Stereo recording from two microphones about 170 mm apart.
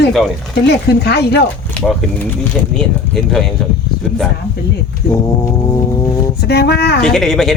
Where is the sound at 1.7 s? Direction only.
10° left (ahead or behind).